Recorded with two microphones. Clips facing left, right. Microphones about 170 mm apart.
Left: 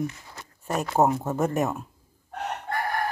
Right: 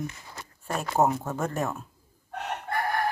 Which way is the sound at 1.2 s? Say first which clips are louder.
Left 5 dB; 15° left (ahead or behind).